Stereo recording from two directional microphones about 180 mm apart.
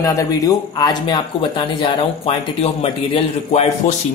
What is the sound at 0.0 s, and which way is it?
Speech, 20° left (ahead or behind).